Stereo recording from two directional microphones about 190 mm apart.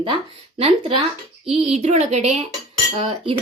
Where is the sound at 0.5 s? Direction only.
30° right (ahead or behind).